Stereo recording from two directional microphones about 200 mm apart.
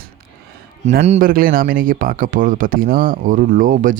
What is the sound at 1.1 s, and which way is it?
Speech, 45° right (ahead or behind).